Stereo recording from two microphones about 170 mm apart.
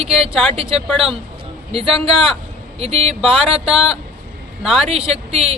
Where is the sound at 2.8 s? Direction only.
35° right (ahead or behind).